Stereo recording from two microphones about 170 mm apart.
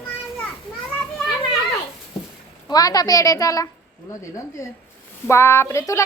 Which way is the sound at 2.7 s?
20° left (ahead or behind).